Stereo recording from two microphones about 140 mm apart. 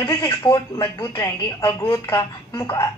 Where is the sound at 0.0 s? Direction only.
20° left (ahead or behind).